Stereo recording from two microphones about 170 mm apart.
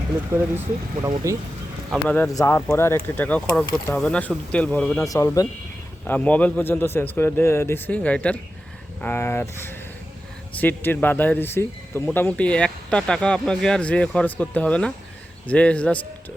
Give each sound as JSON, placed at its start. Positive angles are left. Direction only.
{"t": 0.3, "sound": "speech", "side_deg": -15}
{"t": 2.0, "sound": "speech", "side_deg": 10}
{"t": 4.9, "sound": "speech", "side_deg": 20}
{"t": 6.1, "sound": "speech", "side_deg": 10}